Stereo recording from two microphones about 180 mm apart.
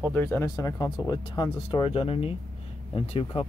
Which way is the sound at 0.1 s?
10° left (ahead or behind).